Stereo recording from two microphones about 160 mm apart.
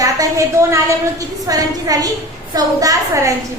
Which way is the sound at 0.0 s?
20° right (ahead or behind).